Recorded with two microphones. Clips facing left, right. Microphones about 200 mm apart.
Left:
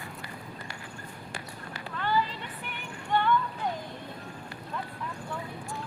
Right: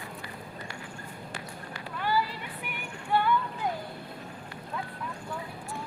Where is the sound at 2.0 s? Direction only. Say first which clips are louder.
Even; 10° right (ahead or behind).